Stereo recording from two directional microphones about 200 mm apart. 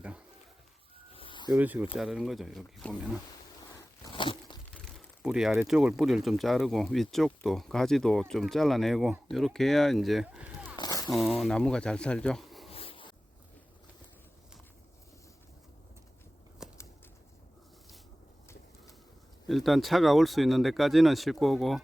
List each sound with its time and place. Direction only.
1.1 s a sound: 25° left (ahead or behind)
1.5 s speech: 10° right (ahead or behind)
4.1 s crunch: 25° left (ahead or behind)
4.7 s speech: centre (ahead or behind)
10.8 s a sound: 20° left (ahead or behind)
11.1 s speech: centre (ahead or behind)
12.7 s zipper: 30° left (ahead or behind)
16.6 s a sound: 5° right (ahead or behind)
19.5 s speech: centre (ahead or behind)